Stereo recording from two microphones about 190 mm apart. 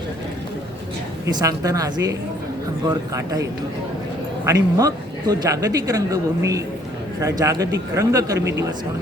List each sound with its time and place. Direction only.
1.3 s speech: 20° right (ahead or behind)
4.4 s speech: 20° right (ahead or behind)